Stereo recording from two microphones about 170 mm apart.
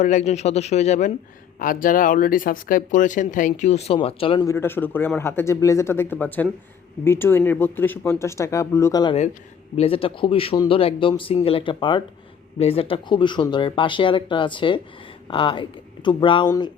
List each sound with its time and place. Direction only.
0.0 s speech: 45° left (ahead or behind)
4.4 s speech: 15° left (ahead or behind)
9.7 s speech: 35° left (ahead or behind)